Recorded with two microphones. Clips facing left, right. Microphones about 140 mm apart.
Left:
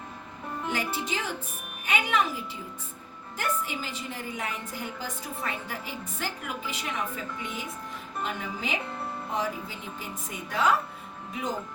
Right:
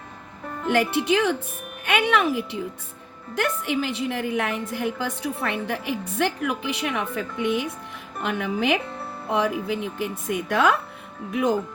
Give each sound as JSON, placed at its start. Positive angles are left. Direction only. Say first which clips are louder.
{"t": 0.7, "sound": "a woman's voice", "louder": "right 12 dB", "side_deg": -70}